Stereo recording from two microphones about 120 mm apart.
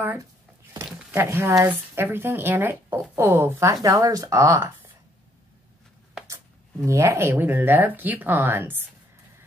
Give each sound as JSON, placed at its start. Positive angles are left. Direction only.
{"t": 1.1, "sound": "speech", "side_deg": -20}
{"t": 6.2, "sound": "speech", "side_deg": -25}